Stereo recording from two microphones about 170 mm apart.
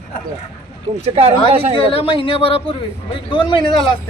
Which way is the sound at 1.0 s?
35° right (ahead or behind).